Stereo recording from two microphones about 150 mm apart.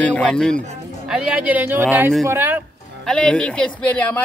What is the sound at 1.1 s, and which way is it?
A woman's voice, 5° right (ahead or behind).